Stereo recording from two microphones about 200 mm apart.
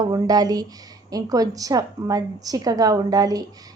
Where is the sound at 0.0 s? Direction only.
20° right (ahead or behind).